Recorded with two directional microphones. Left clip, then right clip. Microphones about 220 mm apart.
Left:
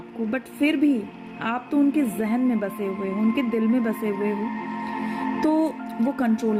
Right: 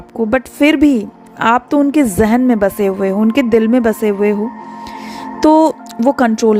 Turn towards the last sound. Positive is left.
turn(degrees=-45)  # may be behind; listen again after turning